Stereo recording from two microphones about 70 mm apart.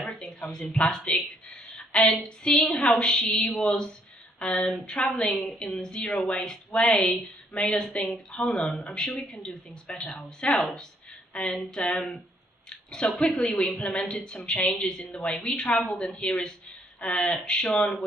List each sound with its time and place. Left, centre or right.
0.4 s a woman's voice: centre
12.6 s a woman's voice: centre